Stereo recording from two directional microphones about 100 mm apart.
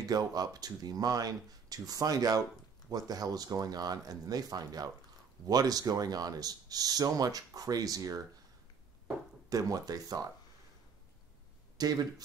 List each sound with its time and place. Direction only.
0.1 s speech: 40° right (ahead or behind)
9.5 s speech: 35° right (ahead or behind)
11.8 s speech: 40° right (ahead or behind)